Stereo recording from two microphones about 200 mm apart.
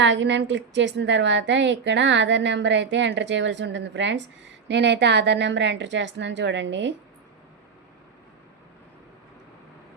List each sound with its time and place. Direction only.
0.0 s a woman's voice: 65° right (ahead or behind)